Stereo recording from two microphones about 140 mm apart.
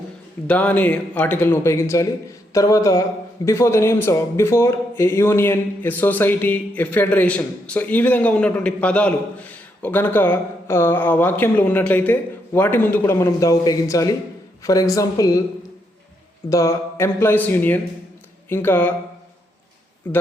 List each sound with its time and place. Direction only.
0.4 s a man's voice: 10° left (ahead or behind)
16.5 s speech: 20° left (ahead or behind)